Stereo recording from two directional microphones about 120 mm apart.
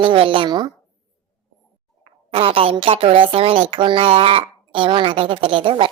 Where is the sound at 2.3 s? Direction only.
50° right (ahead or behind).